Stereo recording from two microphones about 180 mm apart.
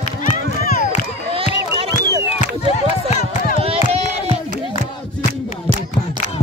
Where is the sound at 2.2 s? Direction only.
35° left (ahead or behind).